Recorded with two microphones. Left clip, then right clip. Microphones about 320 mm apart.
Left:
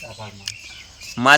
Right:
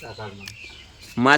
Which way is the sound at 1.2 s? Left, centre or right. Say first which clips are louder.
Left 3 dB; centre.